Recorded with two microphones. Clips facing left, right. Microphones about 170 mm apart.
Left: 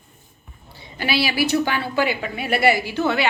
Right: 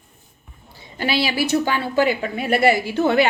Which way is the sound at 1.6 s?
40° right (ahead or behind).